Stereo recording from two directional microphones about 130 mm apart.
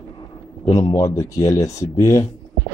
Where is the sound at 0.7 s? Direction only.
30° left (ahead or behind).